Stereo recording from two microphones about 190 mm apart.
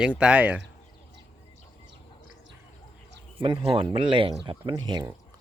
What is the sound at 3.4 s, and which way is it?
Speech, 25° right (ahead or behind).